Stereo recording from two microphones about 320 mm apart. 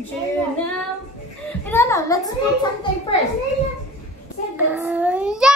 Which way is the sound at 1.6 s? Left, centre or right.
Centre.